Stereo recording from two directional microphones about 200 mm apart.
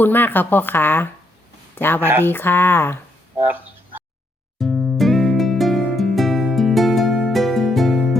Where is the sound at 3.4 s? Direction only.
10° right (ahead or behind).